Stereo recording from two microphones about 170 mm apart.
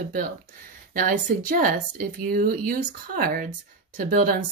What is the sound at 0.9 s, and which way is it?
A woman's voice, 55° right (ahead or behind).